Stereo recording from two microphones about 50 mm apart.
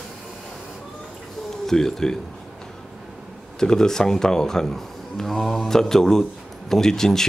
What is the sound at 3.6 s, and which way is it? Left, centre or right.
Speech, centre.